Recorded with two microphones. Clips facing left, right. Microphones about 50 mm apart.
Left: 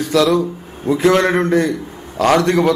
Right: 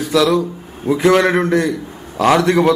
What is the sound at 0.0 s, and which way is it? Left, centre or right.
A man's voice, centre.